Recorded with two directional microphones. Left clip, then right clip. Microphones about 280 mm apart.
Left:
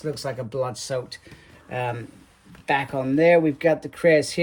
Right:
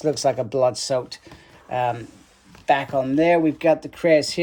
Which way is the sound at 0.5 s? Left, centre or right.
Centre.